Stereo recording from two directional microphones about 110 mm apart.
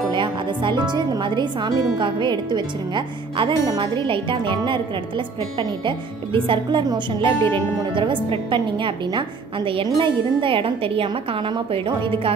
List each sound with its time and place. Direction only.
0.1 s speech: 45° right (ahead or behind)